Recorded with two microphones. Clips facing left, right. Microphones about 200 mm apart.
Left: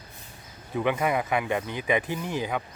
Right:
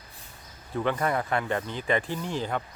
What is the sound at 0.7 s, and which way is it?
Speech, 10° left (ahead or behind).